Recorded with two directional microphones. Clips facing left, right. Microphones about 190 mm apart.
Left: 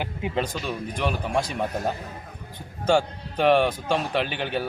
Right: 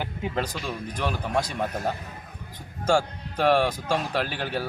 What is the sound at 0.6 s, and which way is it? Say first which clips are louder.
Speech: left 2 dB; 5° left (ahead or behind).